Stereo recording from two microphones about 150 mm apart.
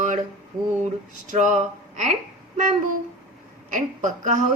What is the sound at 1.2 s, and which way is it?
Speech, 55° right (ahead or behind).